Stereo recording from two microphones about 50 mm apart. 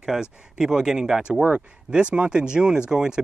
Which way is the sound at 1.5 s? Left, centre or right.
Right.